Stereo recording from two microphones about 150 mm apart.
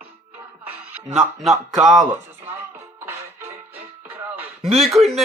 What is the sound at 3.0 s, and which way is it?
Music, 15° right (ahead or behind).